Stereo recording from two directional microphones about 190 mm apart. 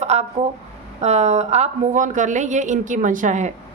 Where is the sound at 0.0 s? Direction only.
35° right (ahead or behind).